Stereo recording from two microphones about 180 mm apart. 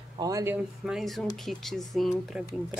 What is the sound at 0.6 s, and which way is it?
Speech, centre (ahead or behind).